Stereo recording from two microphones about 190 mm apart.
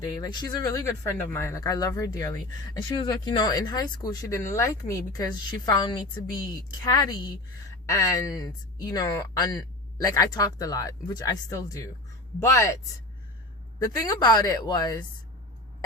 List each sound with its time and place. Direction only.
0.0 s speech: 20° left (ahead or behind)
13.7 s speech: 20° left (ahead or behind)